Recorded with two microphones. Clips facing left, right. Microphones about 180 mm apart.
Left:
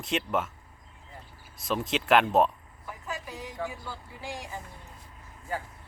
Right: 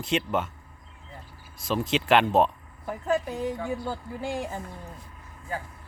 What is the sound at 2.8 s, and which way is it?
A woman's voice, 55° right (ahead or behind).